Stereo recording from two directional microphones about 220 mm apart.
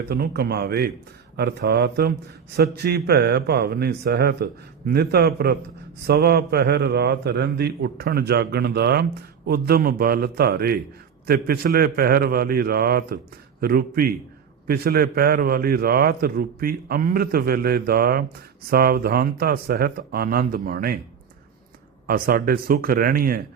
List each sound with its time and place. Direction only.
0.1 s a man's voice: 45° right (ahead or behind)
22.0 s speech: 40° right (ahead or behind)